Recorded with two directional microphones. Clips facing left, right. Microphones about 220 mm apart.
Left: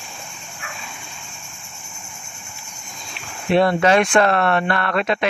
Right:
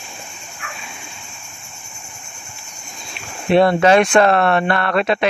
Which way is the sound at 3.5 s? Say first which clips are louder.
Right 3 dB; 25° right (ahead or behind).